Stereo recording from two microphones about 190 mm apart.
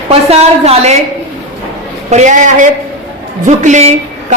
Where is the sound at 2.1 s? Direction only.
40° right (ahead or behind).